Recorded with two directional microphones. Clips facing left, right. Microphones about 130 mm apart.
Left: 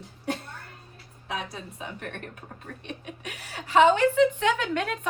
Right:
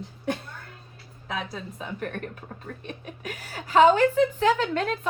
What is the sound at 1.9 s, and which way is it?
Speech, 40° right (ahead or behind).